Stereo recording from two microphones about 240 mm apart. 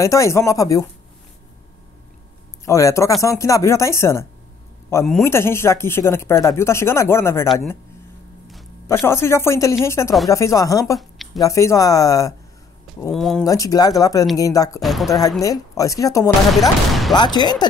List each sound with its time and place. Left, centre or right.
0.0 s speech: centre
2.6 s speech: centre
8.8 s speech: centre
13.1 s speech: centre
13.4 s speech: centre
14.8 s speech: centre
15.0 s speech: centre
16.5 s speech: centre
17.1 s speech: centre